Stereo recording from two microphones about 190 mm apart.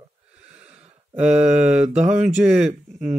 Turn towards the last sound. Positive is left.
turn(degrees=-5)  # may be behind; listen again after turning